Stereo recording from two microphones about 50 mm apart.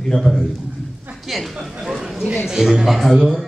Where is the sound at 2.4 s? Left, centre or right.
Centre.